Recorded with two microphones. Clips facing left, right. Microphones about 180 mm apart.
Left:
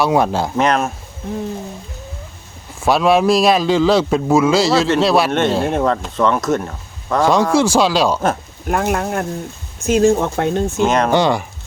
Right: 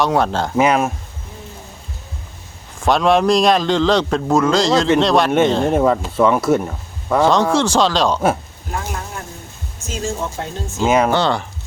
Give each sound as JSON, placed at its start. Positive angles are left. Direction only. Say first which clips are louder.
{"t": 0.0, "sound": "speech", "louder": "left 2 dB", "side_deg": 10}
{"t": 0.5, "sound": "speech", "louder": "right 3 dB", "side_deg": -10}
{"t": 2.8, "sound": "a man's voice", "louder": "left 1 dB", "side_deg": 5}
{"t": 5.7, "sound": "speech", "louder": "right 2 dB", "side_deg": -10}
{"t": 7.5, "sound": "speech", "louder": "left 2 dB", "side_deg": 10}
{"t": 8.6, "sound": "speech", "louder": "left 9 dB", "side_deg": 65}
{"t": 10.8, "sound": "speech", "louder": "right 3 dB", "side_deg": -5}
{"t": 11.1, "sound": "speech", "louder": "left 3 dB", "side_deg": 10}